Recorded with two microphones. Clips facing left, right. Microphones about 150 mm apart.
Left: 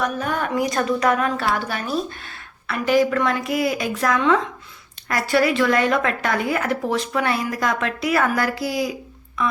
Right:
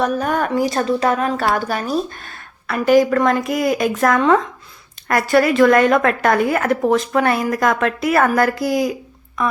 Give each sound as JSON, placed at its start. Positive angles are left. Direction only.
{"t": 0.0, "sound": "a woman's voice", "side_deg": -45}
{"t": 0.5, "sound": "a woman's voice", "side_deg": -30}
{"t": 1.4, "sound": "a woman's voice", "side_deg": -40}